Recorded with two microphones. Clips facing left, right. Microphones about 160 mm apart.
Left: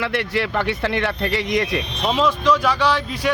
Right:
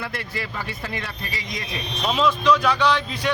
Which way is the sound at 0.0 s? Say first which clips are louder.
Left 9 dB; 70° left (ahead or behind).